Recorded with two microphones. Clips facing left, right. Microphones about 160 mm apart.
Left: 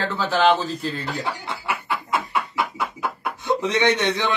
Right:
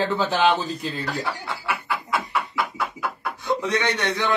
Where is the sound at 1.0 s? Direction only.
20° left (ahead or behind).